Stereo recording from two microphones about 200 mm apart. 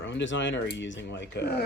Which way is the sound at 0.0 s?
65° left (ahead or behind).